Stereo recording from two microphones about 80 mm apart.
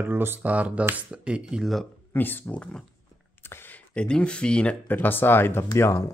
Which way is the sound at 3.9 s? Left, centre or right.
Centre.